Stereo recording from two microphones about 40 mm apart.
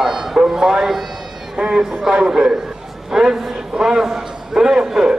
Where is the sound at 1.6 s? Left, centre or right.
Right.